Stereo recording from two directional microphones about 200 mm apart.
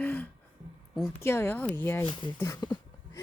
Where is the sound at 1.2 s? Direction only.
10° left (ahead or behind).